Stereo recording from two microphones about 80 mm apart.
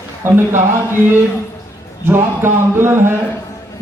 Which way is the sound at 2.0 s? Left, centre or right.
Right.